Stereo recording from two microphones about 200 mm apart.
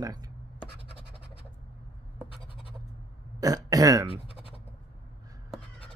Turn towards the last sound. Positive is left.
turn(degrees=-15)  # may be behind; listen again after turning